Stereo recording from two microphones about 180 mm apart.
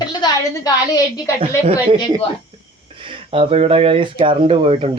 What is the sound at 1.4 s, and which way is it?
Speech, 30° right (ahead or behind).